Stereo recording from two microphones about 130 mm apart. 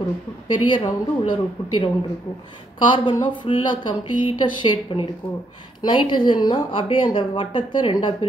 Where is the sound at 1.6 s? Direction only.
40° left (ahead or behind).